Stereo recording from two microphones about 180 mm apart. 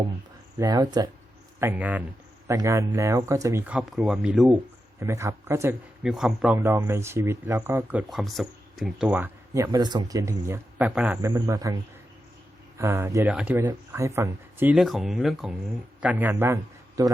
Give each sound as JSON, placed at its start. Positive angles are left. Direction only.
{"t": 0.6, "sound": "speech", "side_deg": -20}
{"t": 1.5, "sound": "speech", "side_deg": -10}
{"t": 4.9, "sound": "speech", "side_deg": -15}
{"t": 6.1, "sound": "speech", "side_deg": 0}
{"t": 9.0, "sound": "a man's voice", "side_deg": -15}